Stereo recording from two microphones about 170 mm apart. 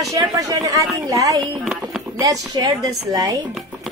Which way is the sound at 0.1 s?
20° right (ahead or behind).